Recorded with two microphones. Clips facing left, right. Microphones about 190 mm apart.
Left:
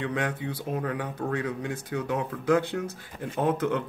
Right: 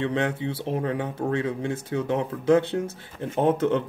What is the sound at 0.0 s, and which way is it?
Speech, 25° right (ahead or behind).